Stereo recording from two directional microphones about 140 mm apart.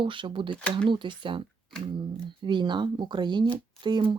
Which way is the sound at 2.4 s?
35° right (ahead or behind).